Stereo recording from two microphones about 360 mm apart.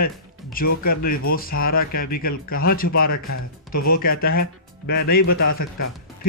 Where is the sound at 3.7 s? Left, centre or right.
Left.